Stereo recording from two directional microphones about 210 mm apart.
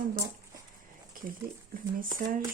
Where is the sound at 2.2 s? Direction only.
40° right (ahead or behind).